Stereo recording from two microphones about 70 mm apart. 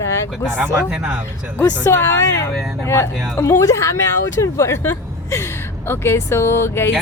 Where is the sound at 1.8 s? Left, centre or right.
Left.